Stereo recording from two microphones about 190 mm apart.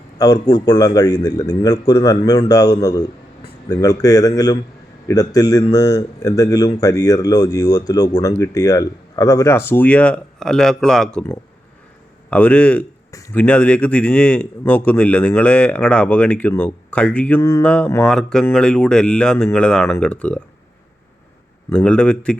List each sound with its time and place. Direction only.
0.2 s speech: 20° left (ahead or behind); by 11.3 s 5° left (ahead or behind)
12.3 s a man's voice: 5° left (ahead or behind)
21.7 s speech: 5° left (ahead or behind)